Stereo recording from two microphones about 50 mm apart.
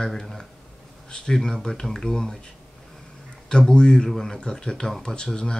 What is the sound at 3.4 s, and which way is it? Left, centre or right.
Speech, centre.